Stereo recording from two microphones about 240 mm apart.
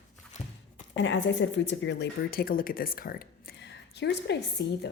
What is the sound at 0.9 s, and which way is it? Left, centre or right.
A woman's voice, left.